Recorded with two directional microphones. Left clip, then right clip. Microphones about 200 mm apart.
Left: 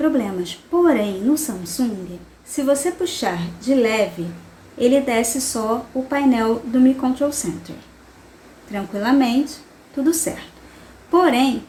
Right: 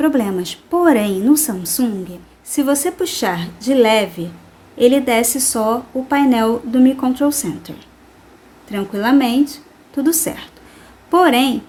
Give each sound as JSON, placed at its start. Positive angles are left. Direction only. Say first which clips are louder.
{"t": 0.0, "sound": "a woman's voice", "louder": "right 3 dB", "side_deg": -50}
{"t": 8.7, "sound": "a woman's voice", "louder": "right 4 dB", "side_deg": -50}